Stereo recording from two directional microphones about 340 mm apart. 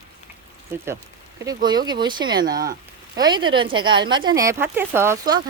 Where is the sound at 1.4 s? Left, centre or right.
Centre.